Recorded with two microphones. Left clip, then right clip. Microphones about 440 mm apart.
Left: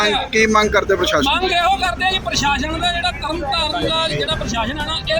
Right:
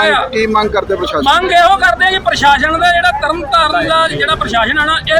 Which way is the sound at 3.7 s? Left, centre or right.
Left.